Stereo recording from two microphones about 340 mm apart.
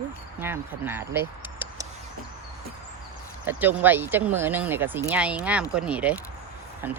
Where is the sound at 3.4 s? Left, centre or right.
Centre.